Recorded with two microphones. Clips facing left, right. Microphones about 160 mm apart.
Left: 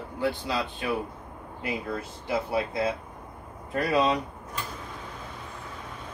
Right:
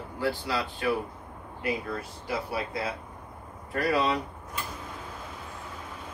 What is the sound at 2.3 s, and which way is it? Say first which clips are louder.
Speech: left 4 dB; 25° left (ahead or behind).